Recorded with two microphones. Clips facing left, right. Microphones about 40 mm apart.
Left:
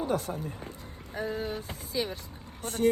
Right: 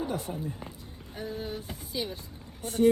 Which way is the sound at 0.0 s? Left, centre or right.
Left.